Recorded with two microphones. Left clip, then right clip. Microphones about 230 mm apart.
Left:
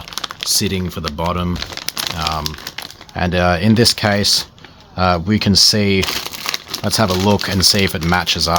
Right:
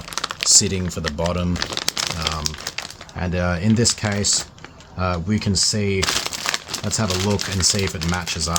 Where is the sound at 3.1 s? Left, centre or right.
Left.